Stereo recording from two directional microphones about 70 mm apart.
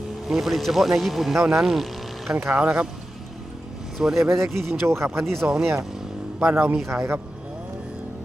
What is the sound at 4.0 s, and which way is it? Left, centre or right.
Speech, centre.